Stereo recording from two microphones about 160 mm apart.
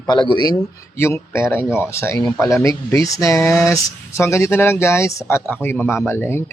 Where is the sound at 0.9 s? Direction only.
15° left (ahead or behind).